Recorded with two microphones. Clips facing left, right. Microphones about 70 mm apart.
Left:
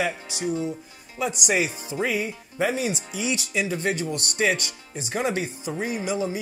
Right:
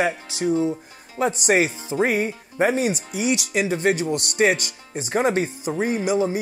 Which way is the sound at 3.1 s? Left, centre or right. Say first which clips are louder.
Right 5 dB; right.